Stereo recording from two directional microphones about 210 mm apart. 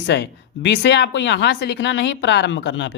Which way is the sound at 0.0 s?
55° left (ahead or behind).